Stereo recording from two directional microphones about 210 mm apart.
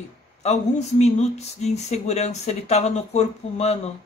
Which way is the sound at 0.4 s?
35° left (ahead or behind).